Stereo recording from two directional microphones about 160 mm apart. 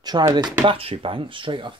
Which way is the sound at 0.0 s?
25° right (ahead or behind).